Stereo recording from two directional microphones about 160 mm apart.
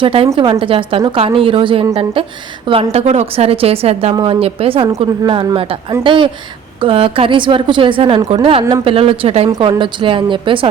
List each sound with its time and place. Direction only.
0.0 s a woman's voice: 35° right (ahead or behind)